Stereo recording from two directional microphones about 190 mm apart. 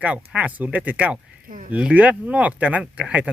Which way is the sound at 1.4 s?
45° right (ahead or behind).